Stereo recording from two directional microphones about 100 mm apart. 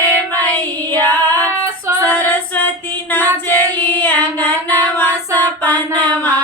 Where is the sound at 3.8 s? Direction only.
20° left (ahead or behind).